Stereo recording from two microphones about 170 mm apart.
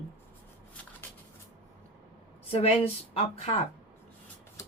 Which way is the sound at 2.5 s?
35° left (ahead or behind).